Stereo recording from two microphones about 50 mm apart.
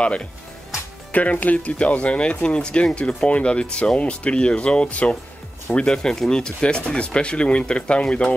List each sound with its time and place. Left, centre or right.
0.0 s speech: left